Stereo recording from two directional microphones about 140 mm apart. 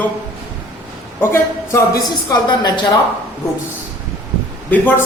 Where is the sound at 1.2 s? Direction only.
20° left (ahead or behind).